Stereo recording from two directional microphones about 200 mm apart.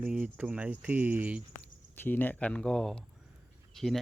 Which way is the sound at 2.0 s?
10° left (ahead or behind).